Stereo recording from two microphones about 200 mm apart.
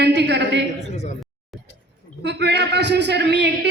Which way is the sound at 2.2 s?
60° right (ahead or behind).